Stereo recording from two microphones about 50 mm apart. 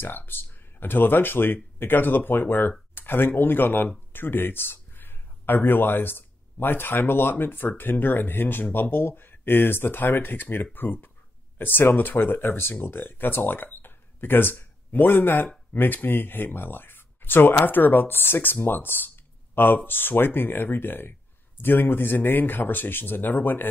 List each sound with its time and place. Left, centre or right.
0.0 s speech: left